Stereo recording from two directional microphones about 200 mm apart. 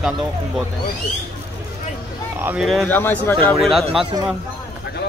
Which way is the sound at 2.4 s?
5° right (ahead or behind).